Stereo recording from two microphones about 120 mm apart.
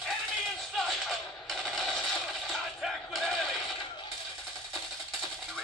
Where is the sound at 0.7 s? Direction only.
Centre (ahead or behind).